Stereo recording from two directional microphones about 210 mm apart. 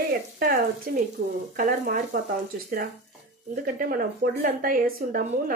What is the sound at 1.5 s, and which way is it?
Speech, 40° right (ahead or behind).